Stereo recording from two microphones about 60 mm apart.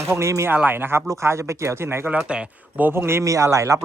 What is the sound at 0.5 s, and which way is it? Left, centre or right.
Speech, right.